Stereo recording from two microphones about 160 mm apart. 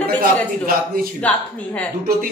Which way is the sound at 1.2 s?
10° left (ahead or behind).